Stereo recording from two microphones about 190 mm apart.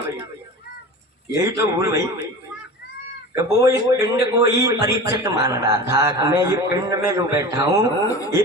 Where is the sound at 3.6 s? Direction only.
15° right (ahead or behind).